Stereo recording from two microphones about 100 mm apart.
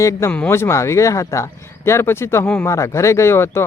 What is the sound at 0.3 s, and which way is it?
Speech, 20° left (ahead or behind).